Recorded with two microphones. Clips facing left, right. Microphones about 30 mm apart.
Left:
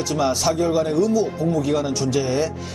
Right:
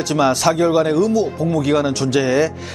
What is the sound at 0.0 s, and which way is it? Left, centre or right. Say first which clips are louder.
A man's voice: right 5 dB; right.